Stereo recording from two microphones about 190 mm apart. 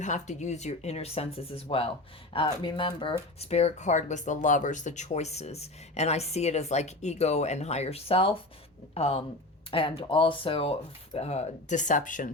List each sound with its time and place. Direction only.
0.0 s speech: 40° left (ahead or behind)